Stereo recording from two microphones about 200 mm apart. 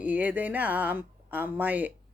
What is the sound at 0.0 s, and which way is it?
Speech, 10° right (ahead or behind).